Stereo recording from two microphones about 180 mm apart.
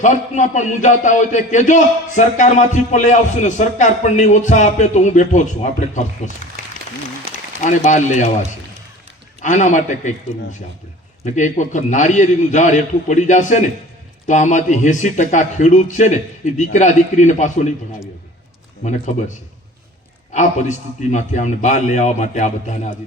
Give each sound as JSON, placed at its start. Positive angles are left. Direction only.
{"t": 0.0, "sound": "a man's voice", "side_deg": 40}
{"t": 7.6, "sound": "a man's voice", "side_deg": 40}
{"t": 9.4, "sound": "a man's voice", "side_deg": 40}
{"t": 11.2, "sound": "a man's voice", "side_deg": 45}
{"t": 18.8, "sound": "a man's voice", "side_deg": 40}
{"t": 20.3, "sound": "a man's voice", "side_deg": 40}